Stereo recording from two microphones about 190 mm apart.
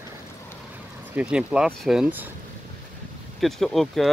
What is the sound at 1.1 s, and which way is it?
Speech, 5° right (ahead or behind).